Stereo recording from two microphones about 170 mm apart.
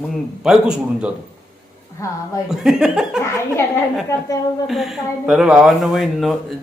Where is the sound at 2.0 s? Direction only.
20° left (ahead or behind).